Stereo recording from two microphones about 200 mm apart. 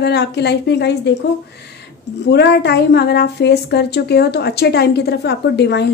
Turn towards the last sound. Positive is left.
turn(degrees=60)  # may be behind; listen again after turning